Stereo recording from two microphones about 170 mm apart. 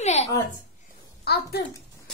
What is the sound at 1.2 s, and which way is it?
Speech, 70° left (ahead or behind).